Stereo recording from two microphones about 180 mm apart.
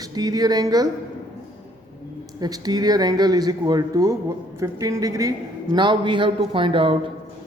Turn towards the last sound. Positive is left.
turn(degrees=-30)  # may be behind; listen again after turning